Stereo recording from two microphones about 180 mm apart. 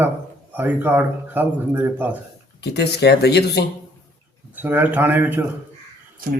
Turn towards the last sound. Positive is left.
turn(degrees=-50)  # may be behind; listen again after turning